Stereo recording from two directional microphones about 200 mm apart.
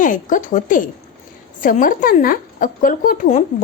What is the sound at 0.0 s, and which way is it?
A woman's voice, 40° left (ahead or behind).